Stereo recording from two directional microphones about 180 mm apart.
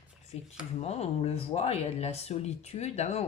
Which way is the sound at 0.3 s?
35° left (ahead or behind).